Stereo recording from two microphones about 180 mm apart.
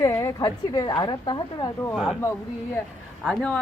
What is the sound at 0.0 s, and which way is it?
A woman's voice, 20° left (ahead or behind).